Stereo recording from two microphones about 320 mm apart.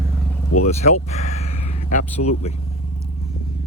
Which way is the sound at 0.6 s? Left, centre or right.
Left.